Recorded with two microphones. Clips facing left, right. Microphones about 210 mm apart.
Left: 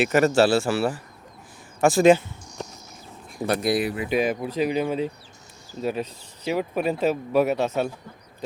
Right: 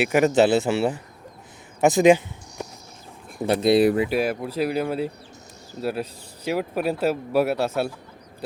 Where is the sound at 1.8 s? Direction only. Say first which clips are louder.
Even; 15° right (ahead or behind).